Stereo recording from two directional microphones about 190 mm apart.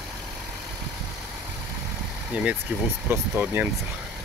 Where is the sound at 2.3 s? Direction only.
5° right (ahead or behind).